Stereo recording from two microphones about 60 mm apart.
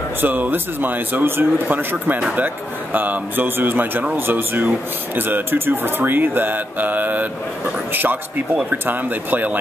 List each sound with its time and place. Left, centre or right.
0.2 s speech: right